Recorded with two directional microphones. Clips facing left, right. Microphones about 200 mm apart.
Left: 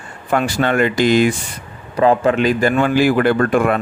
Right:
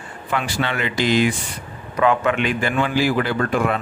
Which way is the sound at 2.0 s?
35° left (ahead or behind).